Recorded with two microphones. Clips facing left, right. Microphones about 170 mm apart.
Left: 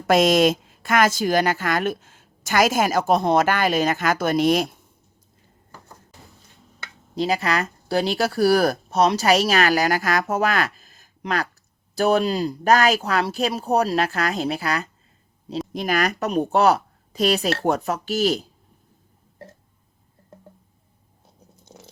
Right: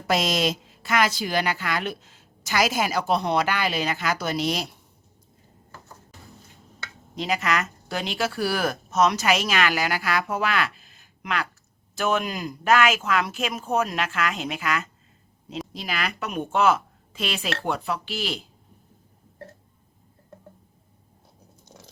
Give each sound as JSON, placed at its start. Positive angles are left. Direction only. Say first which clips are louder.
{"t": 0.1, "sound": "a woman's voice", "louder": "left 7 dB", "side_deg": 50}
{"t": 7.2, "sound": "a woman's voice", "louder": "left 3 dB", "side_deg": 35}
{"t": 15.7, "sound": "a woman's voice", "louder": "left 9 dB", "side_deg": 50}